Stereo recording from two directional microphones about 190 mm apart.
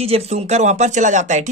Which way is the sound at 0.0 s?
35° right (ahead or behind).